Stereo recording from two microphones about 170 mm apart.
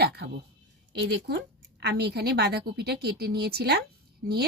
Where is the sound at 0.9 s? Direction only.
85° right.